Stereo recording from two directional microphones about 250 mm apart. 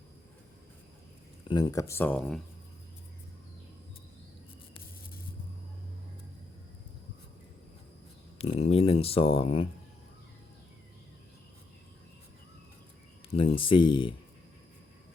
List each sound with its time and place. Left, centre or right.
1.5 s speech: centre
8.4 s speech: left
13.3 s speech: left